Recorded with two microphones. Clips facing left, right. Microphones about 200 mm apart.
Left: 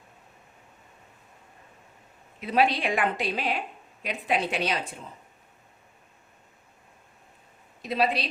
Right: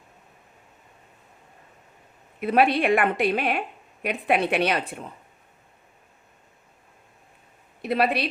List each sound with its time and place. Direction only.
2.4 s a woman's voice: 55° right (ahead or behind)
7.8 s speech: 60° right (ahead or behind)